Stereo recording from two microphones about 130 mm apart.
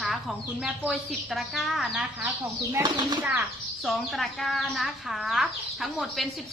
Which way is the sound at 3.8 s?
Centre (ahead or behind).